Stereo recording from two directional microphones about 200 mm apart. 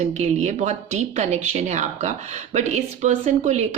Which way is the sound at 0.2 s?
35° right (ahead or behind).